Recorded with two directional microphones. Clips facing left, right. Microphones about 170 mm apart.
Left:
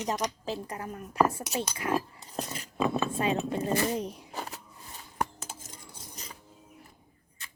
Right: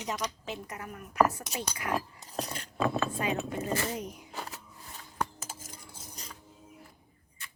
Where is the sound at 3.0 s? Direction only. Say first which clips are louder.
Left 3 dB; 25° left (ahead or behind).